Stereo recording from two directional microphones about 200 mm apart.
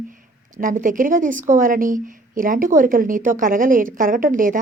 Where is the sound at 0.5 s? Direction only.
40° right (ahead or behind).